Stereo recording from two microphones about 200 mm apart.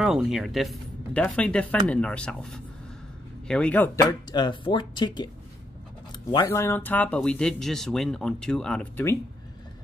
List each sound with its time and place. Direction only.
0.0 s speech: 5° right (ahead or behind); by 5.3 s 20° left (ahead or behind)
6.3 s speech: 15° left (ahead or behind)